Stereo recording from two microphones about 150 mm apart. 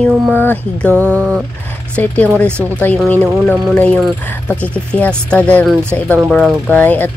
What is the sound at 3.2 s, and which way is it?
Jackhammer, 15° right (ahead or behind).